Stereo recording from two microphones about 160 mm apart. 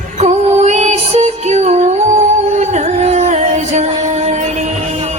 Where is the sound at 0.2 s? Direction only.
45° right (ahead or behind).